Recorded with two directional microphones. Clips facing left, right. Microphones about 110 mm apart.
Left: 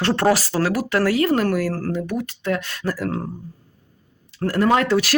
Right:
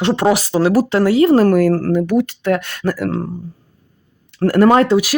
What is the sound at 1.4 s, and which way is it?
Speech, 45° right (ahead or behind).